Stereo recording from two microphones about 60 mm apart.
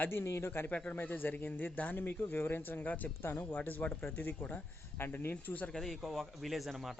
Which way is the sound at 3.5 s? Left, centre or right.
Left.